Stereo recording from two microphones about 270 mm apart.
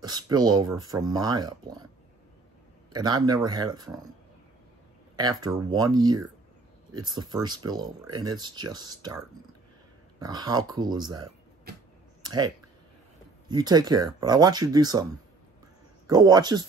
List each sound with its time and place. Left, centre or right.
0.0 s speech: centre
2.9 s speech: centre
5.1 s speech: centre
12.2 s typing: centre
13.5 s speech: centre
16.1 s speech: centre